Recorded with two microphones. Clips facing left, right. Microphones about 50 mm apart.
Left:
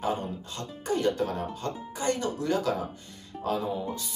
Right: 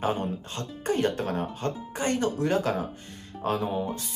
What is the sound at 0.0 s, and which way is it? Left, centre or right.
Speech, right.